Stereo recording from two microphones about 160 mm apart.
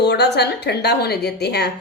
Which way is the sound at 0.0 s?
90° left.